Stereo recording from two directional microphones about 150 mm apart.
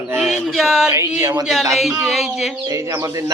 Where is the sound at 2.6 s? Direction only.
20° right (ahead or behind).